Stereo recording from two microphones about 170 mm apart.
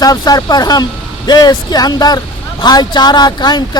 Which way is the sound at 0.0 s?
20° left (ahead or behind).